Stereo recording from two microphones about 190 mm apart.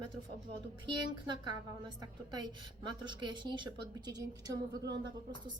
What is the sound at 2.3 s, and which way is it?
A woman's voice, 20° right (ahead or behind).